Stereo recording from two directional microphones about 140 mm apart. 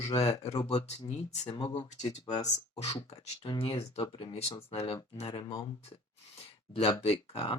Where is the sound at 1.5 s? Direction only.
30° left (ahead or behind).